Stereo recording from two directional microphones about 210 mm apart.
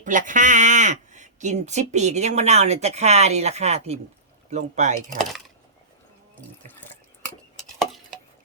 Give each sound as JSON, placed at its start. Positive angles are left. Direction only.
{"t": 0.0, "sound": "speech", "side_deg": -40}
{"t": 7.8, "sound": "stir", "side_deg": 0}